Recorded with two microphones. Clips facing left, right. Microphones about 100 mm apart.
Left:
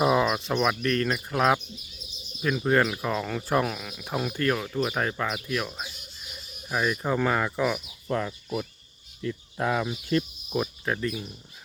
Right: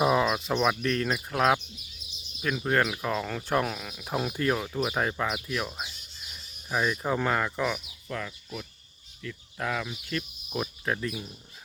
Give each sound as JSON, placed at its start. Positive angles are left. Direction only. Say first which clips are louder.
{"t": 0.0, "sound": "speech", "louder": "left 1 dB", "side_deg": 0}
{"t": 8.0, "sound": "speech", "louder": "left 8 dB", "side_deg": 30}
{"t": 10.5, "sound": "speech", "louder": "left 3 dB", "side_deg": 0}